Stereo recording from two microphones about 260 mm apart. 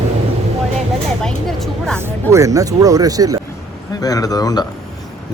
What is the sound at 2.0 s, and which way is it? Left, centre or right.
Speech, centre.